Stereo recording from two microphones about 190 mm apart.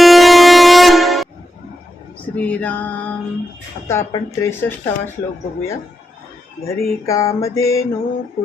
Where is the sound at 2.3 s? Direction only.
10° left (ahead or behind).